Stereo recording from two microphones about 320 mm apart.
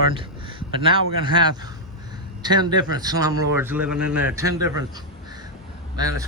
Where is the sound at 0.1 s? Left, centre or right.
Centre.